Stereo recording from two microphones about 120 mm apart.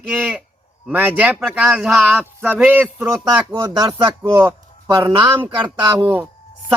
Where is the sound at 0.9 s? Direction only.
15° right (ahead or behind).